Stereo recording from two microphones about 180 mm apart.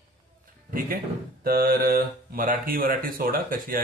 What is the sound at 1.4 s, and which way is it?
Speech, 55° right (ahead or behind).